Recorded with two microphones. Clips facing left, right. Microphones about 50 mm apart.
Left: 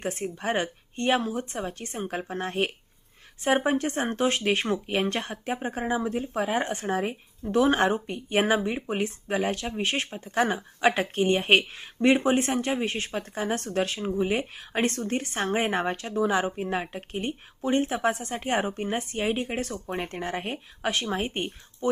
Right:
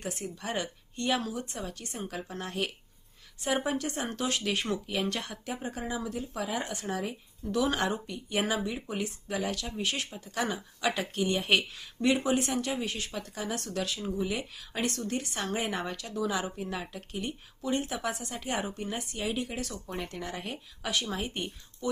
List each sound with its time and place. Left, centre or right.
0.0 s speech: left